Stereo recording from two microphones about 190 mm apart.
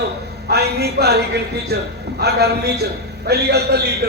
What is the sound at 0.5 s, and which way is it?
Speech, 60° right (ahead or behind).